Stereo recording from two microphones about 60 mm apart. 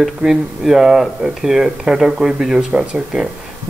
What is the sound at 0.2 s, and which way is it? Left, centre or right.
Speech, centre.